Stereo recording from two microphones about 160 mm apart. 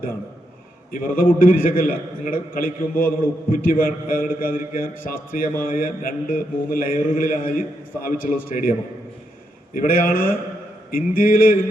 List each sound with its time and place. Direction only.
0.9 s a man's voice: 60° left (ahead or behind)
9.7 s a man's voice: 60° left (ahead or behind)